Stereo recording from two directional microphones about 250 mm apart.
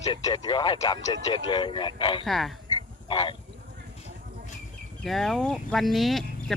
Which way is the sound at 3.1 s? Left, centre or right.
Centre.